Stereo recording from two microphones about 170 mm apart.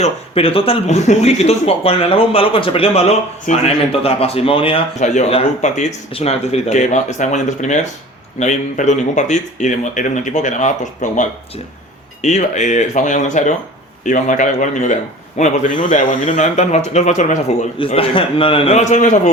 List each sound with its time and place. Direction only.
0.0 s speech: 35° left (ahead or behind)
3.5 s speech: 50° left (ahead or behind)
4.0 s speech: 35° left (ahead or behind)
17.7 s speech: 35° left (ahead or behind)